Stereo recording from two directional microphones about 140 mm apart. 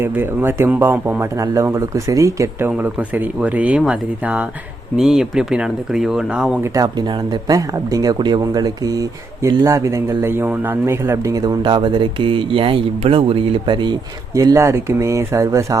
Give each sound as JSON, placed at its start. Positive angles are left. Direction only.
{"t": 0.0, "sound": "speech", "side_deg": -15}
{"t": 6.7, "sound": "speech", "side_deg": -30}
{"t": 14.3, "sound": "speech", "side_deg": -25}